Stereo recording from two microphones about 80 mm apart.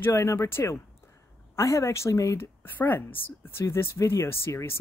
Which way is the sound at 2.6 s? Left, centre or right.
Left.